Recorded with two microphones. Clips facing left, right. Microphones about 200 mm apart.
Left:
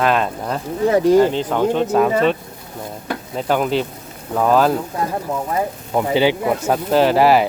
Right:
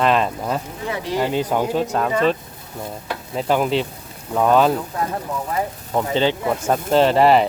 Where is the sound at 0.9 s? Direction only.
45° left (ahead or behind).